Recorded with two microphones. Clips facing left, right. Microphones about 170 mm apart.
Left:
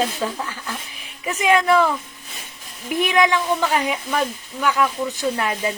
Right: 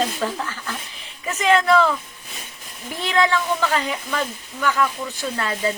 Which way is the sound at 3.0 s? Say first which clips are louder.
Left 2 dB; 15° left (ahead or behind).